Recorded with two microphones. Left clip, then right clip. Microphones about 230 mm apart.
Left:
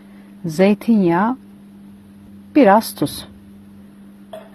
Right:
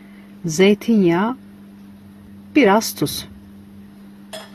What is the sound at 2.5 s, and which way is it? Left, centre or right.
Speech, centre.